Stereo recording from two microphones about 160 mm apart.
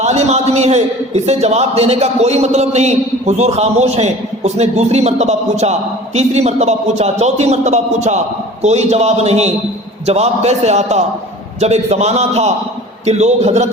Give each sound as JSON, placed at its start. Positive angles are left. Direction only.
{"t": 0.0, "sound": "a man's voice", "side_deg": -45}